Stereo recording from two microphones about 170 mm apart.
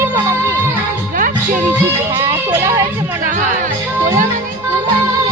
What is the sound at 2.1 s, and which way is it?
Music, 15° right (ahead or behind).